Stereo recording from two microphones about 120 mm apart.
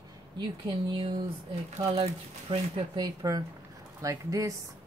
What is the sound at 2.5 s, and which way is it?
Speech, 50° right (ahead or behind).